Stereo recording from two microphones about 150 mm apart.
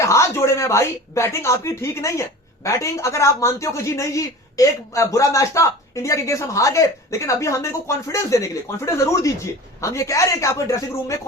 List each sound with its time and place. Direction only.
0.0 s speech: 20° left (ahead or behind)